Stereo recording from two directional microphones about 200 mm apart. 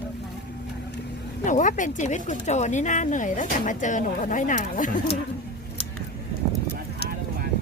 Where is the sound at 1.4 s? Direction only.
40° left (ahead or behind).